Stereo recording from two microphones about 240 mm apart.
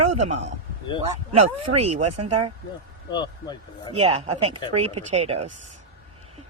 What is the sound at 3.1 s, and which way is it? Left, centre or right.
Speech, centre.